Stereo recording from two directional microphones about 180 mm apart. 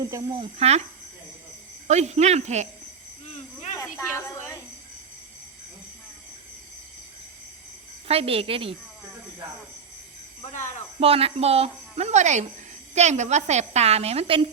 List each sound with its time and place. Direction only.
0.0 s speech: 20° right (ahead or behind)
0.5 s a woman's voice: 35° right (ahead or behind)
1.9 s a woman's voice: 40° right (ahead or behind)
8.0 s a woman's voice: 35° right (ahead or behind)
11.0 s a woman's voice: 35° right (ahead or behind)